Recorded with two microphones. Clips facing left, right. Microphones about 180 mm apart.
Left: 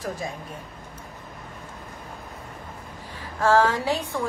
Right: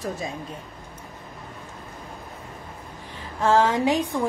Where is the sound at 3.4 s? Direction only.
20° right (ahead or behind).